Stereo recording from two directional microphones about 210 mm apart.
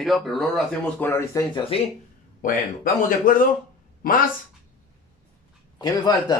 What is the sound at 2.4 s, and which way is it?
Speech, 40° left (ahead or behind).